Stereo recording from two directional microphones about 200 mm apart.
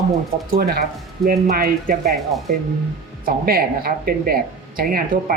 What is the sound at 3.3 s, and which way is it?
Speech, 45° right (ahead or behind).